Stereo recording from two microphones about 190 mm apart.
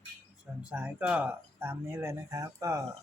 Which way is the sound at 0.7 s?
5° right (ahead or behind).